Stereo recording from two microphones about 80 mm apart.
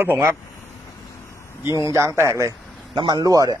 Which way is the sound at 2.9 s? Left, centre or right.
Right.